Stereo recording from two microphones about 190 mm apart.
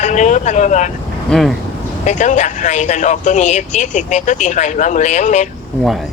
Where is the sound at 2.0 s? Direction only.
40° left (ahead or behind).